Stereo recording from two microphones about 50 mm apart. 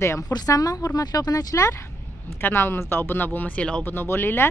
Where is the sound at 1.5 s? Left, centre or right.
Left.